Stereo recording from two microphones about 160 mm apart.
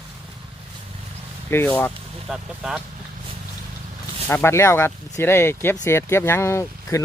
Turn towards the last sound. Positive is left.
turn(degrees=20)  # may be behind; listen again after turning